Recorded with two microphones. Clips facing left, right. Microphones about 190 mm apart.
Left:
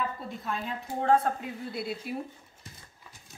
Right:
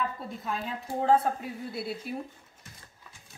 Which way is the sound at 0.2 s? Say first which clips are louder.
Even; centre (ahead or behind).